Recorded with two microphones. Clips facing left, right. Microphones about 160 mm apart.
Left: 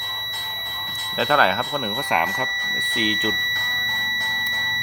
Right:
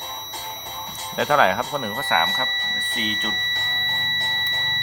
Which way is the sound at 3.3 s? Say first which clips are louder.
Left 4 dB; 20° right (ahead or behind).